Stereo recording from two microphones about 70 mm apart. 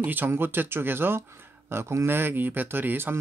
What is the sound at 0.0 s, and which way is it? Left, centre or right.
Speech, right.